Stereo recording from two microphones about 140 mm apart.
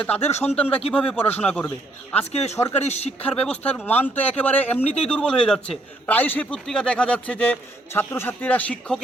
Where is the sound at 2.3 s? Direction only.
50° left (ahead or behind).